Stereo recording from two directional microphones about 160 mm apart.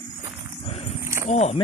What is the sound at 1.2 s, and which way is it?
Speech, 40° left (ahead or behind).